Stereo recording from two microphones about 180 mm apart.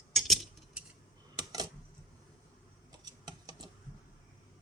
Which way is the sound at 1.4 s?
20° right (ahead or behind).